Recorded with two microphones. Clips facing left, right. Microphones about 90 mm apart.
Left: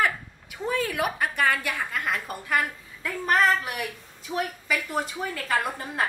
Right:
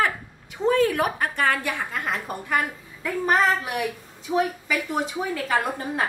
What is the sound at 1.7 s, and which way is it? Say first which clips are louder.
A woman's voice: right 1 dB; 15° right (ahead or behind).